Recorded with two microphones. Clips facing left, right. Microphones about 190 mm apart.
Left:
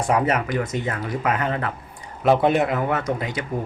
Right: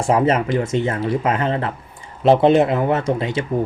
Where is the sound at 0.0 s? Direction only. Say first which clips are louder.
Right 4 dB; 25° right (ahead or behind).